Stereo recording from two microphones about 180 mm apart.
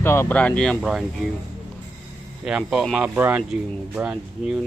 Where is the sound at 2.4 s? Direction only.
5° right (ahead or behind).